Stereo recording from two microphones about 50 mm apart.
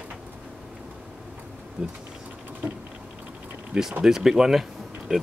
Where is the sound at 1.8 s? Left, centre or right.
Centre.